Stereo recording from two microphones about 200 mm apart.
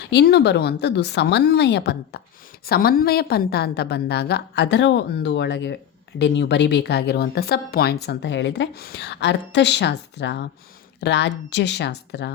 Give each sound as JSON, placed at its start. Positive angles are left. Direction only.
{"t": 0.0, "sound": "speech", "side_deg": 55}